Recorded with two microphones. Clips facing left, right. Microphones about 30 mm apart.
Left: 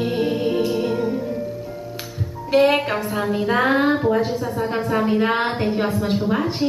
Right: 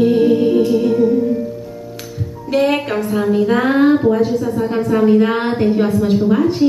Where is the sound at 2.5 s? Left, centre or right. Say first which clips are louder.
Right 1 dB; centre.